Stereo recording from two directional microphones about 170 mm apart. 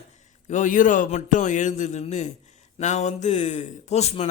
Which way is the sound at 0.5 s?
50° left (ahead or behind).